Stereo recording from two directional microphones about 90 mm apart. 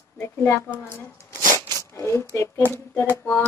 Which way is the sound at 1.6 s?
30° left (ahead or behind).